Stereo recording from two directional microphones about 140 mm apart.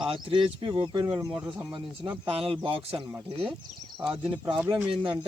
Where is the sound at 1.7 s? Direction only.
35° right (ahead or behind).